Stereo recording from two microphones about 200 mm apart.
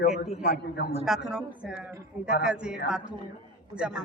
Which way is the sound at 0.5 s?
50° left (ahead or behind).